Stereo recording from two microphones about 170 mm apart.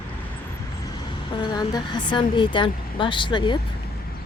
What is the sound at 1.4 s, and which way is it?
Speech, 25° left (ahead or behind).